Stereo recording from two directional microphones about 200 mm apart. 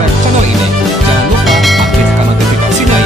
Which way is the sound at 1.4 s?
Centre (ahead or behind).